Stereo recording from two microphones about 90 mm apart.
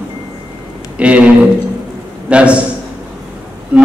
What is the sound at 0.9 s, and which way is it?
Speech, 15° right (ahead or behind).